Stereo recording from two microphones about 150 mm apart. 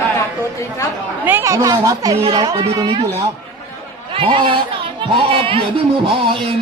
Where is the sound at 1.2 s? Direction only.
15° right (ahead or behind).